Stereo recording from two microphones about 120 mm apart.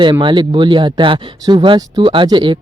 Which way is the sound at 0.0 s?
40° right (ahead or behind).